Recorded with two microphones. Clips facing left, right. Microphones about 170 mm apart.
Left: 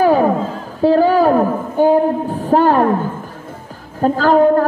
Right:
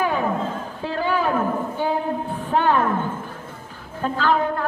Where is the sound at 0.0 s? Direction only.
35° left (ahead or behind).